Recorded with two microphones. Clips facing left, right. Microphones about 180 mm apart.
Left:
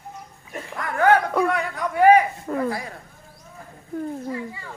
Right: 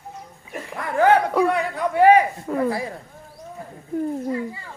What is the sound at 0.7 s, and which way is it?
A man's voice, 25° right (ahead or behind).